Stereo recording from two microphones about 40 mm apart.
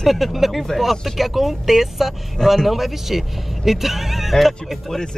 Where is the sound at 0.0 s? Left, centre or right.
Centre.